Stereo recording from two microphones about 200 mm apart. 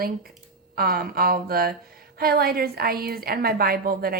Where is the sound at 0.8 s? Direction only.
45° right (ahead or behind).